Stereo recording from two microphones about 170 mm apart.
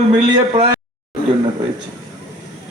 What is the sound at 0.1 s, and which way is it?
Speech, 25° right (ahead or behind).